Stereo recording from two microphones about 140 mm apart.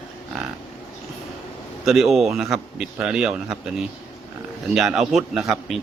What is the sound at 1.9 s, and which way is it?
Speech, centre (ahead or behind).